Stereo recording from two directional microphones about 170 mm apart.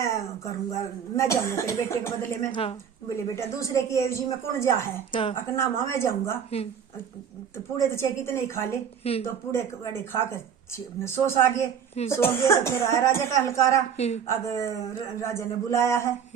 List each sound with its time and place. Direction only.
0.0 s speech: 20° left (ahead or behind)
6.5 s a woman's voice: 35° left (ahead or behind)
7.8 s speech: 15° left (ahead or behind)
13.9 s a woman's voice: 40° left (ahead or behind)
14.3 s speech: 15° left (ahead or behind)